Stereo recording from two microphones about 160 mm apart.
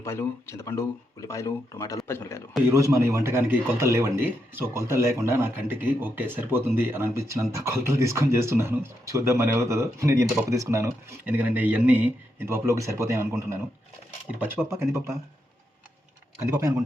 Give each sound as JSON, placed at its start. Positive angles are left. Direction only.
{"t": 0.0, "sound": "speech", "side_deg": 15}
{"t": 2.6, "sound": "speech", "side_deg": -20}